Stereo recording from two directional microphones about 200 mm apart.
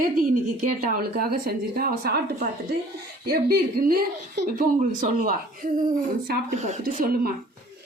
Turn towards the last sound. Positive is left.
turn(degrees=-45)  # may be behind; listen again after turning